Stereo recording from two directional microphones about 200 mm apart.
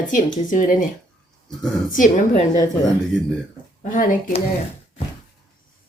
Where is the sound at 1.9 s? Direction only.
40° left (ahead or behind).